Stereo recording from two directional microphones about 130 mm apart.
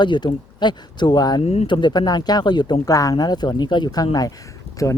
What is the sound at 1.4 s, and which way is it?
Speech, 55° left (ahead or behind).